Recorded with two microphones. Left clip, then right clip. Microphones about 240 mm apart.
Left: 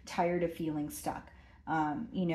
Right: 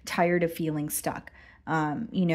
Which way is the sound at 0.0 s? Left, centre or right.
Right.